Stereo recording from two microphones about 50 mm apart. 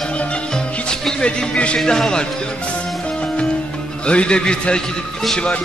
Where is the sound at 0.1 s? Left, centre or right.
Left.